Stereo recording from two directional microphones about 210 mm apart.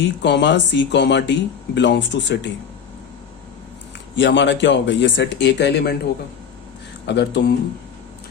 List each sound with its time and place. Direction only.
0.0 s speech: 55° left (ahead or behind)
4.2 s speech: 55° left (ahead or behind)
7.1 s speech: 55° left (ahead or behind)